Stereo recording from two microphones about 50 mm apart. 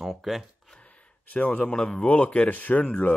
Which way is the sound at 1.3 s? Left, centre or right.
Left.